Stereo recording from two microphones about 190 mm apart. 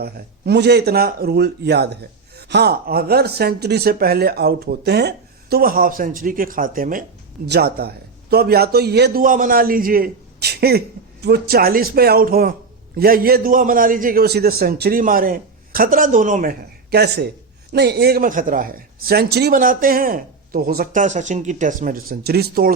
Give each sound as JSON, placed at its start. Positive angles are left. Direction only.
{"t": 0.0, "sound": "speech", "side_deg": -60}
{"t": 7.4, "sound": "speech", "side_deg": -60}
{"t": 9.2, "sound": "a man's voice", "side_deg": -45}